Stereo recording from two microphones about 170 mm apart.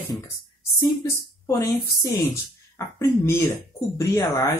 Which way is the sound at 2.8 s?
15° left (ahead or behind).